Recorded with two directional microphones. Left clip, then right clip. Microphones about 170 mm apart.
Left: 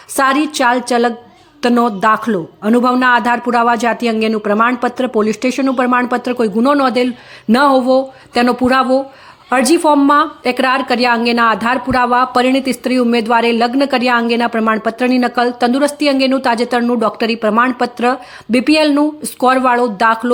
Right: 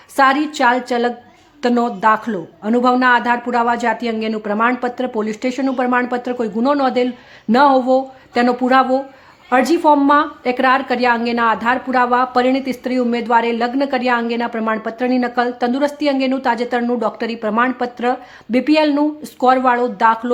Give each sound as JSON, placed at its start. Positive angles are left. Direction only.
{"t": 0.2, "sound": "a woman's voice", "side_deg": 20}